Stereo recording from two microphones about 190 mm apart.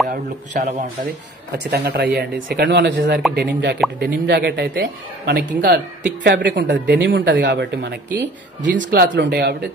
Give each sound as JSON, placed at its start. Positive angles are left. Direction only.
{"t": 0.1, "sound": "a man's voice", "side_deg": -40}
{"t": 1.5, "sound": "speech", "side_deg": -60}